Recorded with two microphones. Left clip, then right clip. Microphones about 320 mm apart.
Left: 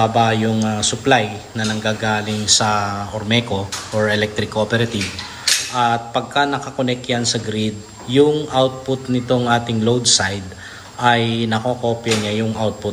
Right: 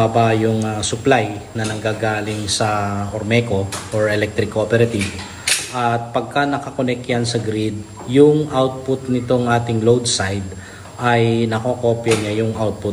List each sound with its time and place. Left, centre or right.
0.0 s speech: centre